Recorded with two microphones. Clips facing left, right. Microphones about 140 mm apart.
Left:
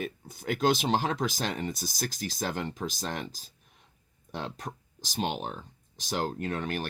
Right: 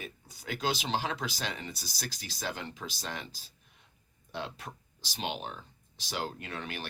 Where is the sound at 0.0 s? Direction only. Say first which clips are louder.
Left 9 dB; 50° left (ahead or behind).